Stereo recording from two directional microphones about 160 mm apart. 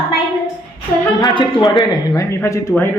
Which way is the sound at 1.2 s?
30° left (ahead or behind).